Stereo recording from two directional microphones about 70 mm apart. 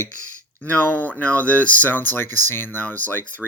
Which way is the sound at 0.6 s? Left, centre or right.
Left.